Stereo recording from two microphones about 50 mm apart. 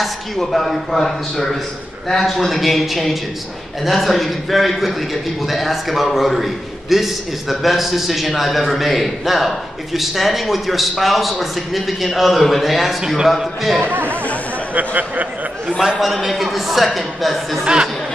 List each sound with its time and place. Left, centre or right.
0.0 s a man's voice: centre
13.7 s speech: right
16.0 s a man's voice: centre